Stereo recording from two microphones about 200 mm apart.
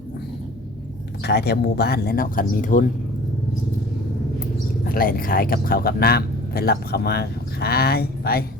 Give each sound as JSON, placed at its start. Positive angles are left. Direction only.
{"t": 1.2, "sound": "speech", "side_deg": 55}
{"t": 4.9, "sound": "speech", "side_deg": 45}